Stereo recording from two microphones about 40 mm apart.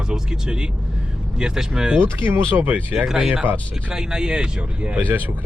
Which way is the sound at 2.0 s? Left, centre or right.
Right.